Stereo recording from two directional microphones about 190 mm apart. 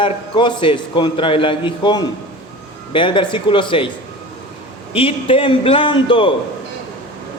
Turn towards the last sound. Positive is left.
turn(degrees=25)  # may be behind; listen again after turning